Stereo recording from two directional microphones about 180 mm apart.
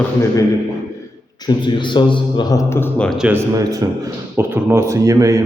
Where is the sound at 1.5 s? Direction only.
25° left (ahead or behind); by 3.3 s 5° left (ahead or behind).